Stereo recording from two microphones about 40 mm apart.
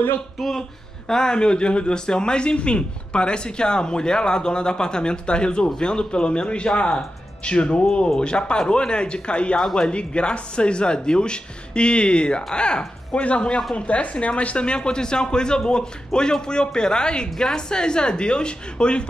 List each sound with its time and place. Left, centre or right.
0.4 s speech: centre
1.0 s speech: centre